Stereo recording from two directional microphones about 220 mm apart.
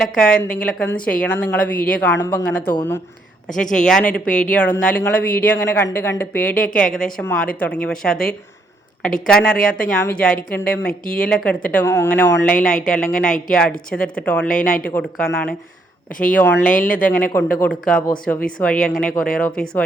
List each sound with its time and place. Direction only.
0.2 s a woman's voice: 5° left (ahead or behind)
3.5 s speech: 35° left (ahead or behind)
3.8 s a woman's voice: 5° left (ahead or behind)